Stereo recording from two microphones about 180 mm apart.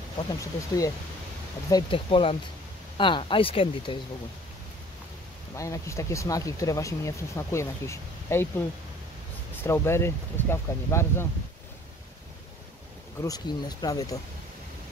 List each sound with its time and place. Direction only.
0.4 s speech: 20° left (ahead or behind)
5.6 s speech: 15° left (ahead or behind)
13.2 s speech: 20° left (ahead or behind)